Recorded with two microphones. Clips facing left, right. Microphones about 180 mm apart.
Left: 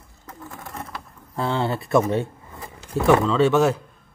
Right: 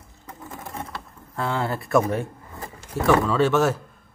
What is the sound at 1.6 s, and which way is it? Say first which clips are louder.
Speech: left 2 dB; centre (ahead or behind).